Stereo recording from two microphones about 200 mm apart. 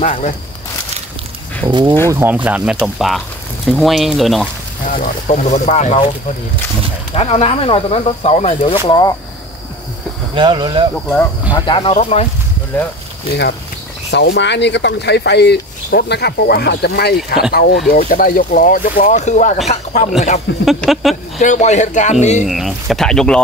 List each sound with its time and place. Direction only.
0.0 s speech: 35° left (ahead or behind)
1.7 s speech: 25° right (ahead or behind)
2.0 s speech: 10° right (ahead or behind)
4.8 s speech: 40° left (ahead or behind)
7.2 s speech: 30° left (ahead or behind)
10.3 s speech: 25° right (ahead or behind)
11.5 s speech: 25° left (ahead or behind)
13.3 s speech: 55° left (ahead or behind); by 20.1 s 35° left (ahead or behind)
20.6 s speech: centre (ahead or behind)
21.4 s speech: 35° left (ahead or behind)
22.5 s speech: centre (ahead or behind)